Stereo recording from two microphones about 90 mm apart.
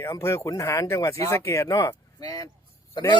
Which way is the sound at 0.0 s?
30° left (ahead or behind).